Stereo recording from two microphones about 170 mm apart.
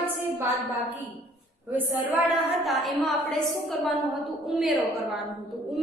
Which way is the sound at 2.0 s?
10° right (ahead or behind).